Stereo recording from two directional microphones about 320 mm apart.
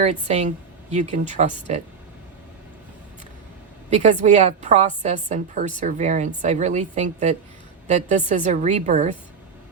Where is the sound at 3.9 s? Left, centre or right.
Right.